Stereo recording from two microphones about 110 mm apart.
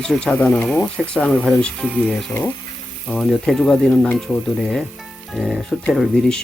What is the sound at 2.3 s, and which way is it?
Speech, 20° left (ahead or behind).